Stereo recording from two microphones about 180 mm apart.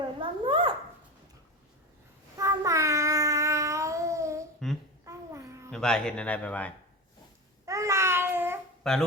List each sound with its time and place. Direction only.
0.2 s babbling: 30° right (ahead or behind)
2.4 s child singing: 15° right (ahead or behind)
5.0 s a sound: 15° right (ahead or behind)
5.7 s speech: 5° left (ahead or behind)
7.6 s babbling: 15° right (ahead or behind)
8.8 s speech: centre (ahead or behind)